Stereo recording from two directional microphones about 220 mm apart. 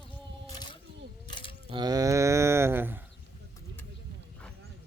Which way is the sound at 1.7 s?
20° right (ahead or behind).